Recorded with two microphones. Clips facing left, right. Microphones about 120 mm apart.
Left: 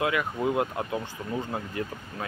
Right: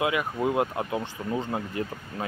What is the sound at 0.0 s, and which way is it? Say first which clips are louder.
Speech: right 1 dB; 20° right (ahead or behind).